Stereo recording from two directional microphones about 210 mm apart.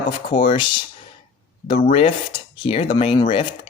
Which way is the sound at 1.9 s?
35° left (ahead or behind).